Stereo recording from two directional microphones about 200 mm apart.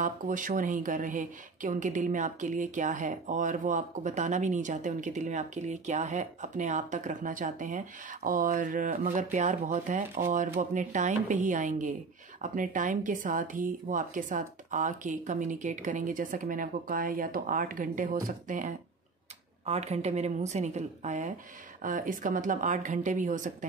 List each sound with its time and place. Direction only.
0.0 s speech: 40° right (ahead or behind)